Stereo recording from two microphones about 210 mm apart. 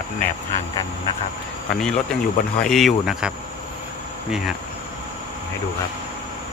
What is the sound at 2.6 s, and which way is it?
Speech, centre (ahead or behind).